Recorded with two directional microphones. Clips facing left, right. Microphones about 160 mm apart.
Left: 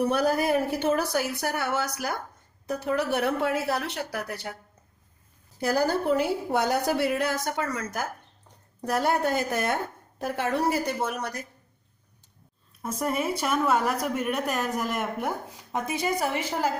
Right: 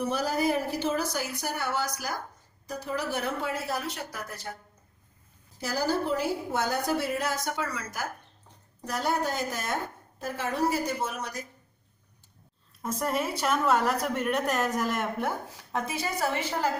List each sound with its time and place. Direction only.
0.1 s a woman's voice: 60° left (ahead or behind)
5.5 s a woman's voice: 55° left (ahead or behind)
8.9 s a woman's voice: 60° left (ahead or behind)
12.8 s a woman's voice: 10° left (ahead or behind)